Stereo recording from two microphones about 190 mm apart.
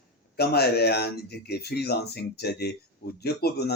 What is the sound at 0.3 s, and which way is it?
Speech, 55° left (ahead or behind).